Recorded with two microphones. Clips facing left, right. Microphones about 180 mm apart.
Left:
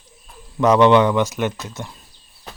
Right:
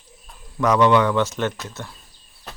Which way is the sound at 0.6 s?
25° left (ahead or behind).